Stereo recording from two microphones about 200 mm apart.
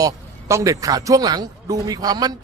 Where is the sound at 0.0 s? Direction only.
15° right (ahead or behind).